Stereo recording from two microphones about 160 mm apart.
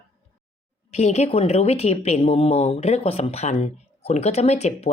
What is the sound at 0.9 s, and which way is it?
A woman's voice, 45° left (ahead or behind).